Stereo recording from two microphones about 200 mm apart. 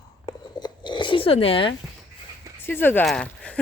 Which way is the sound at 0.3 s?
20° left (ahead or behind).